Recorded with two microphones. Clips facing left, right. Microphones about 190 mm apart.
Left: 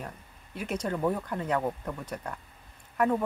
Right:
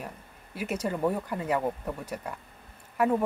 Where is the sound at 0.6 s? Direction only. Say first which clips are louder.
Right 1 dB; 5° right (ahead or behind).